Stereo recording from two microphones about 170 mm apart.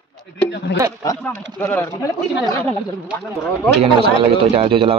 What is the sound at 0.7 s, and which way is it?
Speech, 90° left.